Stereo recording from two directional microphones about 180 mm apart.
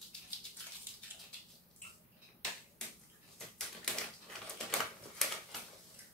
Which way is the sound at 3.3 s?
5° left (ahead or behind).